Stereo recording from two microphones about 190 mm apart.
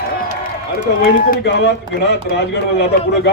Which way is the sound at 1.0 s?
55° left (ahead or behind).